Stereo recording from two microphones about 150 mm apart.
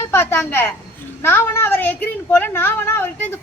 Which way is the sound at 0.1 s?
15° left (ahead or behind).